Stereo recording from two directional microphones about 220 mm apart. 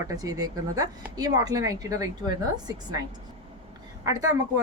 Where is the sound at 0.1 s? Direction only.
15° right (ahead or behind).